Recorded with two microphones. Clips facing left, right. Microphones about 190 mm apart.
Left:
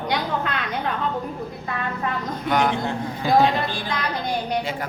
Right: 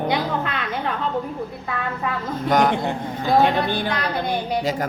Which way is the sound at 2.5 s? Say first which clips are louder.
Right 3 dB; 45° right (ahead or behind).